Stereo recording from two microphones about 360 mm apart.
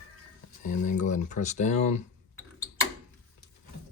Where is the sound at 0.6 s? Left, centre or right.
Left.